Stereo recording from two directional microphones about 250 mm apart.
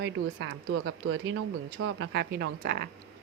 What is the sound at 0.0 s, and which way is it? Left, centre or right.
A woman's voice, right.